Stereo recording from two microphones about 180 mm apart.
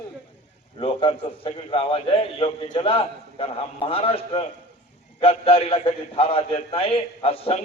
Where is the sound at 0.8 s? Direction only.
30° left (ahead or behind).